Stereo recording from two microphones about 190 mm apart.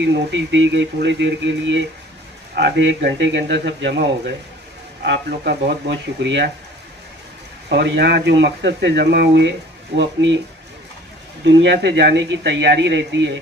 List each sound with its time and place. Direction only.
0.0 s a man's voice: 75° right (ahead or behind)
7.7 s speech: 65° right (ahead or behind)
11.4 s speech: 65° right (ahead or behind)